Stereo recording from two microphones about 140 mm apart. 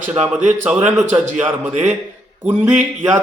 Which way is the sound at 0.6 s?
10° right (ahead or behind).